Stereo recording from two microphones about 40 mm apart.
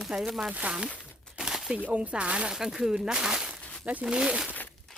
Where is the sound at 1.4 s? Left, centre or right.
Right.